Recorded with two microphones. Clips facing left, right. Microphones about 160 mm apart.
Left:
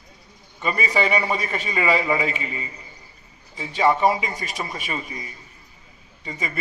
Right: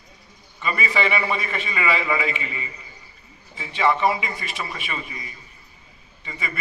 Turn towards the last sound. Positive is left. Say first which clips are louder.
# left 3 dB
turn(degrees=40)  # may be behind; listen again after turning